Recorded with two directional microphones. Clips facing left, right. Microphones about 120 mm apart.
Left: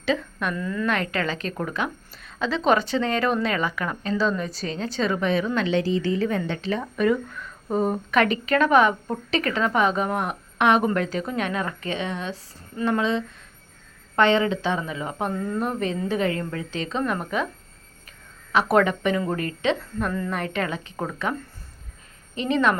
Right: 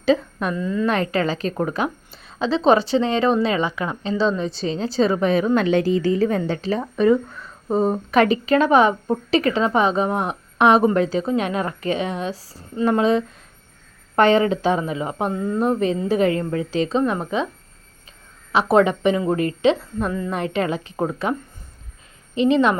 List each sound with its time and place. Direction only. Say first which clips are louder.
0.0 s a sound: right 6 dB; 35° right (ahead or behind)
0.5 s speech: right 7 dB; 20° right (ahead or behind)
0.9 s a woman's voice: right 4 dB; 35° right (ahead or behind)
15.3 s speech: right 4 dB; 20° right (ahead or behind)
15.6 s a woman's voice: right 6 dB; 35° right (ahead or behind)
17.0 s speech: right 4 dB; 20° right (ahead or behind)
18.5 s speech: right 3 dB; 30° right (ahead or behind)
20.1 s a woman's voice: right 2 dB; 15° right (ahead or behind)
20.3 s a woman's voice: right 5 dB; 30° right (ahead or behind)